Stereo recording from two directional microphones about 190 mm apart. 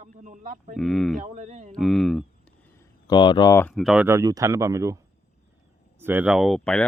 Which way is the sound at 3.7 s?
5° right (ahead or behind).